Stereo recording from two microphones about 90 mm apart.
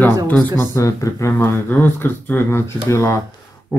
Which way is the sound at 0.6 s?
30° left (ahead or behind).